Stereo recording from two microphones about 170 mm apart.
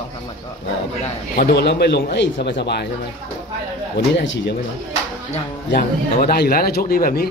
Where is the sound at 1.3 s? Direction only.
70° left (ahead or behind).